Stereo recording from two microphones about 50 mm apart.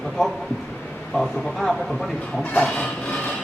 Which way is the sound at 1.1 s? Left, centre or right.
Centre.